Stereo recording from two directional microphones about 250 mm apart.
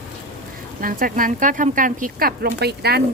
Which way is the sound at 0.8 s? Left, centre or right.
Right.